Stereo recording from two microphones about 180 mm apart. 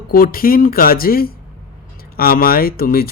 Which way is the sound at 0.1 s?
55° left (ahead or behind).